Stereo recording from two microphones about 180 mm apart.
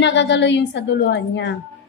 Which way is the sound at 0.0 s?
80° left.